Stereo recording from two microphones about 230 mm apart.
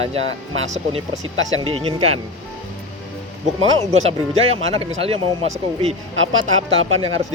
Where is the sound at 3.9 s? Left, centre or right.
Right.